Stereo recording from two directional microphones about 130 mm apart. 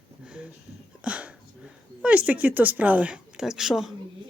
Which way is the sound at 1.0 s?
10° right (ahead or behind).